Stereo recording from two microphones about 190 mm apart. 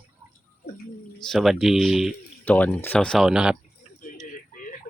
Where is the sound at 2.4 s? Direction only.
10° left (ahead or behind).